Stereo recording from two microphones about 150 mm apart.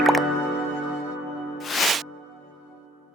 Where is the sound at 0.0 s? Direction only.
Centre (ahead or behind).